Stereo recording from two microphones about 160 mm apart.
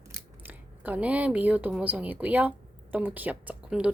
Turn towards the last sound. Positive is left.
turn(degrees=-10)  # may be behind; listen again after turning